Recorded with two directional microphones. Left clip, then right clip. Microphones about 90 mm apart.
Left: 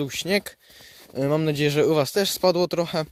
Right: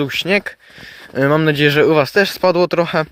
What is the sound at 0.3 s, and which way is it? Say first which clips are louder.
Speech: right 6 dB; 30° left (ahead or behind).